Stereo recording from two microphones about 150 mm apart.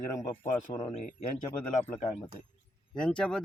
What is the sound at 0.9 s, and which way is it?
Speech, 55° left (ahead or behind).